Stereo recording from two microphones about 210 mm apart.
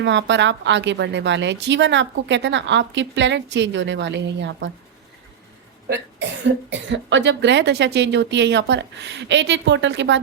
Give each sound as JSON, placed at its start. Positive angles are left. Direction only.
{"t": 0.0, "sound": "a woman's voice", "side_deg": -60}
{"t": 5.9, "sound": "a woman's voice", "side_deg": -55}